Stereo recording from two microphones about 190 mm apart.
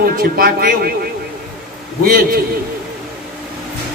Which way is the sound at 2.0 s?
50° right (ahead or behind).